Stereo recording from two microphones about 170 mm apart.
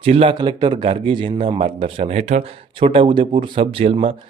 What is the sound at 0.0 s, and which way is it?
Speech, 35° right (ahead or behind).